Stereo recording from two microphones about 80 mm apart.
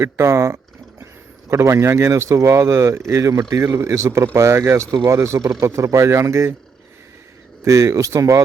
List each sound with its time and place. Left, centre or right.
0.0 s a sound: right
1.5 s speech: right
7.6 s speech: right